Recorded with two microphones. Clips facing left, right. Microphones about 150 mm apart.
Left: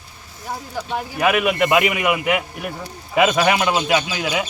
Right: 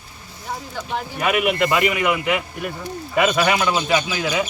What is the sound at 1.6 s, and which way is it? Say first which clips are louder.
A man's voice: left 1 dB; 20° left (ahead or behind).